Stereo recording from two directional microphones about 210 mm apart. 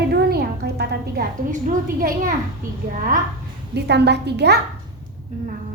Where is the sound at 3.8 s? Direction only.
55° right (ahead or behind).